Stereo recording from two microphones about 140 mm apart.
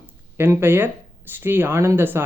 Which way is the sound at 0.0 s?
15° right (ahead or behind).